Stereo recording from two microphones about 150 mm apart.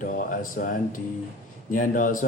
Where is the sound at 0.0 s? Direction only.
65° left (ahead or behind).